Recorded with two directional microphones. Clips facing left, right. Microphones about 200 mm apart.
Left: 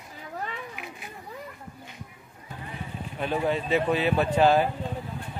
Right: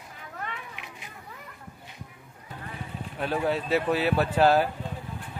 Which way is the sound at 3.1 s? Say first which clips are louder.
Even; centre (ahead or behind).